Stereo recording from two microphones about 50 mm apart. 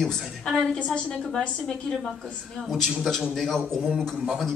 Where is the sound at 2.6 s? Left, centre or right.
Centre.